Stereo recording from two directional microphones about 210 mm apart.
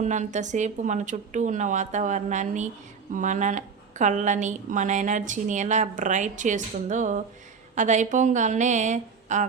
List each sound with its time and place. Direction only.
0.0 s a woman's voice: 35° right (ahead or behind)